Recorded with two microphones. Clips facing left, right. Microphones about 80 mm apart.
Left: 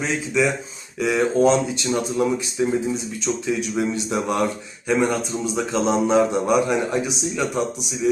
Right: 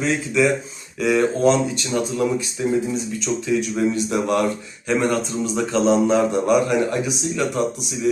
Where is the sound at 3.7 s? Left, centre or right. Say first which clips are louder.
Right 2 dB; centre.